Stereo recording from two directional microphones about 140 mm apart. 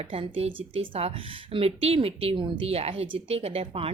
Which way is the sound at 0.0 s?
45° right (ahead or behind).